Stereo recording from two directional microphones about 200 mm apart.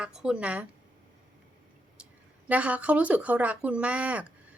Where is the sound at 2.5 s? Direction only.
5° right (ahead or behind).